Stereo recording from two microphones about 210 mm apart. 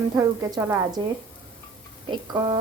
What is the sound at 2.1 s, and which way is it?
Speech, 20° right (ahead or behind).